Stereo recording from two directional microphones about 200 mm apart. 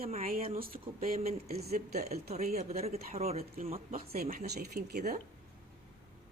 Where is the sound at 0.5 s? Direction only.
45° right (ahead or behind).